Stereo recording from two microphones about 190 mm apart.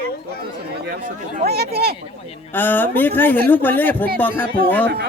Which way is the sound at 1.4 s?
55° right (ahead or behind).